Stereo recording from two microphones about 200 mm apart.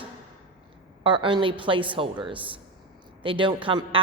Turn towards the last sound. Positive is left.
turn(degrees=-25)  # may be behind; listen again after turning